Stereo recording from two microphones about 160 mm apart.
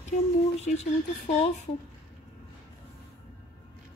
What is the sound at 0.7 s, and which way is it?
Speech, 50° left (ahead or behind).